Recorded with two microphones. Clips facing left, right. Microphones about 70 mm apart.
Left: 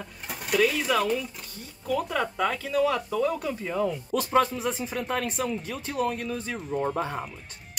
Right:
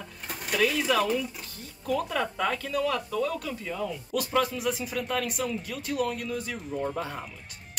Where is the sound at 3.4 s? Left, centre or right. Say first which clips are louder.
Left 5 dB; left.